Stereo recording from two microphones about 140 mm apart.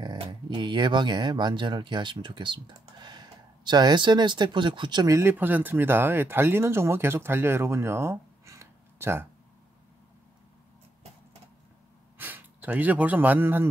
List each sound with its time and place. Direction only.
0.0 s speech: 35° right (ahead or behind)
5.1 s speech: 15° right (ahead or behind)
12.2 s speech: 15° right (ahead or behind)